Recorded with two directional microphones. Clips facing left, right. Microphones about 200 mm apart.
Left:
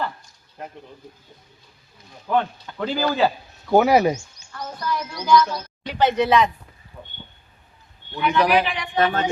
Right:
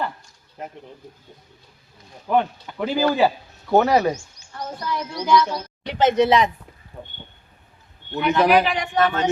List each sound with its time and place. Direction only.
2.2 s speech: 15° right (ahead or behind)
3.2 s a man's voice: 5° right (ahead or behind)
3.8 s speech: 10° left (ahead or behind)
4.1 s a woman's voice: 35° right (ahead or behind)
7.0 s a sound: 30° right (ahead or behind)
8.2 s a woman's voice: 40° right (ahead or behind)